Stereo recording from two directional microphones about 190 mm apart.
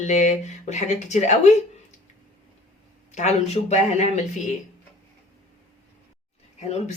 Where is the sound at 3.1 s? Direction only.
35° left (ahead or behind).